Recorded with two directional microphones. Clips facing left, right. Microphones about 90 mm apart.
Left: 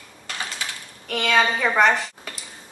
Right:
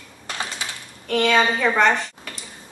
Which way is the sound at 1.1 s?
5° left (ahead or behind).